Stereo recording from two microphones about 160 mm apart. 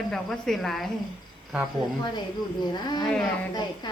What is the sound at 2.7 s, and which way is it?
Speech, 25° left (ahead or behind).